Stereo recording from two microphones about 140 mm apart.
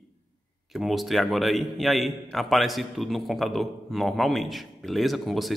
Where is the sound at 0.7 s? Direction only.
Centre (ahead or behind).